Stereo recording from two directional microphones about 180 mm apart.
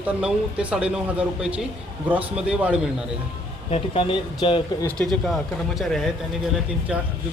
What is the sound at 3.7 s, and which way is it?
Speech, 35° left (ahead or behind).